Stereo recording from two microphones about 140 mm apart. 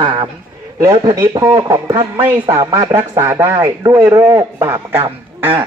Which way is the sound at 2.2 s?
15° right (ahead or behind).